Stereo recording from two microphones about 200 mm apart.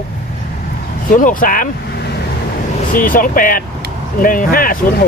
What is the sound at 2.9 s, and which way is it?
Speech, 45° left (ahead or behind).